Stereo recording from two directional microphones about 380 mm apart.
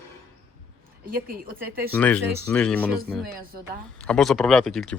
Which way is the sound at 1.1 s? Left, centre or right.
Right.